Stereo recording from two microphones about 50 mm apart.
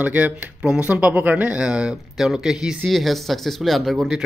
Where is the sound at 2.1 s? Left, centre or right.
Centre.